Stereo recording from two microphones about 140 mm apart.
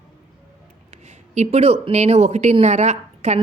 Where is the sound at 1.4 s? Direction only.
50° right (ahead or behind).